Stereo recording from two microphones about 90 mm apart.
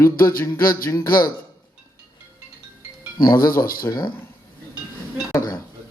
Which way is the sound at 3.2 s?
50° left (ahead or behind).